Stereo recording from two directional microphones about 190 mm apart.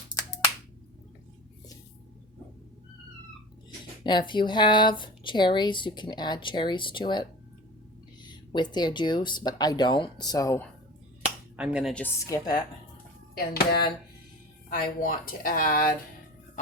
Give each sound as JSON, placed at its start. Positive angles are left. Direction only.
{"t": 4.3, "sound": "speech", "side_deg": 25}
{"t": 11.5, "sound": "speech", "side_deg": -5}
{"t": 12.0, "sound": "speech", "side_deg": 15}
{"t": 13.3, "sound": "speech", "side_deg": 55}